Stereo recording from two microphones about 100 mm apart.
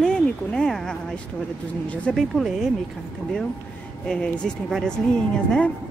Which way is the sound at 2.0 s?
5° left (ahead or behind).